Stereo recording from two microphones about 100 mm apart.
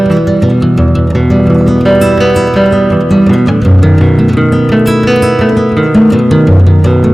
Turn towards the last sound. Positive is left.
turn(degrees=0)  # may be behind; listen again after turning